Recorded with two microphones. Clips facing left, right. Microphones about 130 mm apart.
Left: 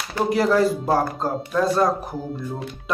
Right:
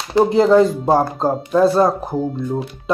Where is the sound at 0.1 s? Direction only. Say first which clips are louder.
Right 7 dB; 25° right (ahead or behind).